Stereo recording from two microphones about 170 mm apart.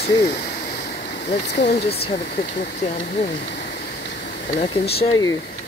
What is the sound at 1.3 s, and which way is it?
Speech, 40° left (ahead or behind).